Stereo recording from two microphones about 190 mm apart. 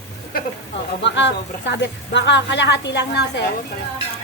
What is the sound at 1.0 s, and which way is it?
Speech, 70° left (ahead or behind).